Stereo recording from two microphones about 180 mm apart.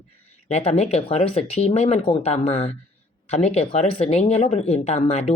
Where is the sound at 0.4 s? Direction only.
40° left (ahead or behind).